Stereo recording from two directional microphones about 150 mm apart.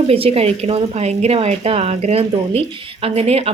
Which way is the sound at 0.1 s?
40° right (ahead or behind).